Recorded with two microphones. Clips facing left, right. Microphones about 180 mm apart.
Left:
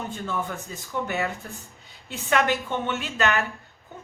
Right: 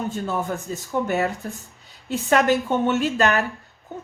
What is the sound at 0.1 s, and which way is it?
A woman's voice, 40° right (ahead or behind).